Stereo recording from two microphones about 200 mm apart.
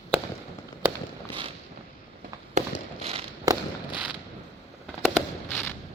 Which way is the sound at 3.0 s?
30° right (ahead or behind).